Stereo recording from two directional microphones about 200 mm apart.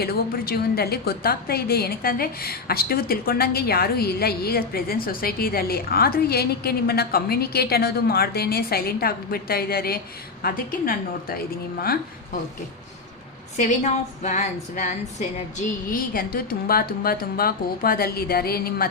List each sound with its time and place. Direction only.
0.0 s a woman's voice: 50° left (ahead or behind)
13.6 s a woman's voice: 35° left (ahead or behind)